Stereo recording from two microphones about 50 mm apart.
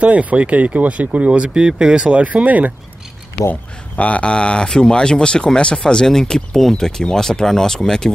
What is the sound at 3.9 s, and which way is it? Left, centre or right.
Speech, left.